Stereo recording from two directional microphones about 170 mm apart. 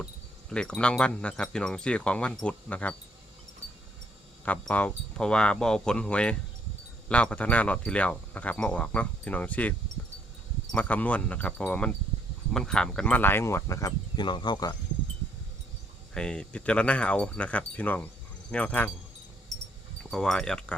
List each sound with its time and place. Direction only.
0.5 s speech: 5° left (ahead or behind)
4.4 s speech: 10° left (ahead or behind); by 14.8 s 25° left (ahead or behind)
16.1 s speech: 5° left (ahead or behind)
20.1 s speech: 5° left (ahead or behind)